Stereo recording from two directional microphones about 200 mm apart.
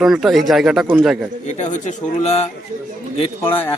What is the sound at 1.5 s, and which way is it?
Speech, 35° left (ahead or behind).